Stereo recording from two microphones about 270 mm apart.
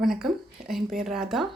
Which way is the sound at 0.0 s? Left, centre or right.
Centre.